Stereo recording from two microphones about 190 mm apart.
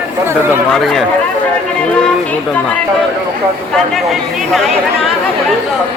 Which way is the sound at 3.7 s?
Centre (ahead or behind).